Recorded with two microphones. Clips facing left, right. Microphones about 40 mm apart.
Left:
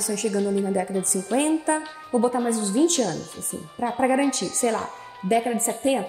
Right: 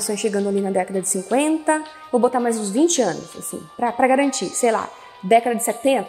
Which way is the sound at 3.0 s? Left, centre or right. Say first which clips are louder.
Right 5 dB; centre.